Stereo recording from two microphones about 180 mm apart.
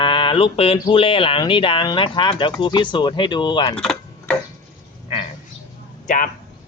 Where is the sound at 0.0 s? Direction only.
25° left (ahead or behind).